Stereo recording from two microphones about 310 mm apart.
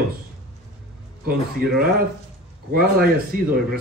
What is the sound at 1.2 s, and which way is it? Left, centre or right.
Speech, right.